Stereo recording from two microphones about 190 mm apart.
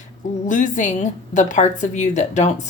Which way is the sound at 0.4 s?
40° left (ahead or behind).